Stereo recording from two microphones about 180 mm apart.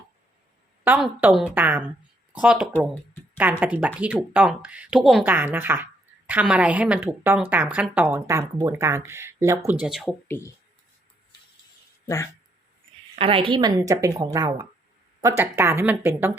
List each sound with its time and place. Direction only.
0.9 s a woman's voice: 5° right (ahead or behind)
10.2 s speech: 10° left (ahead or behind)
12.0 s speech: 15° left (ahead or behind)
13.1 s a woman's voice: 30° right (ahead or behind); by 16.3 s 10° right (ahead or behind)